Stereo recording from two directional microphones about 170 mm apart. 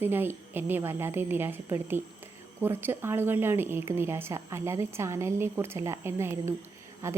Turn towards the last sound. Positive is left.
turn(degrees=-15)  # may be behind; listen again after turning